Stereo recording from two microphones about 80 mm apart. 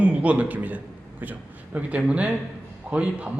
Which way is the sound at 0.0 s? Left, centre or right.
Centre.